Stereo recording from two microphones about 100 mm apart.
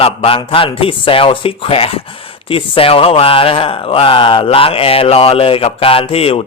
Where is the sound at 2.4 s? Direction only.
65° left (ahead or behind).